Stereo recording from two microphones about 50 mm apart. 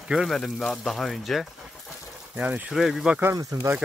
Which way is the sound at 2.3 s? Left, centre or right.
Right.